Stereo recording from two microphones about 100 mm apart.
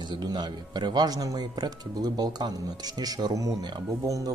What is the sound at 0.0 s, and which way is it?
Speech, 45° right (ahead or behind).